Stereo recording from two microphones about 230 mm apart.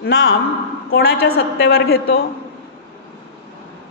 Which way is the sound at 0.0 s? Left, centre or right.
Left.